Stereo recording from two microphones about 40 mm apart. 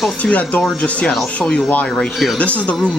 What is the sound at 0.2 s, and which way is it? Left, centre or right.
Speech, left.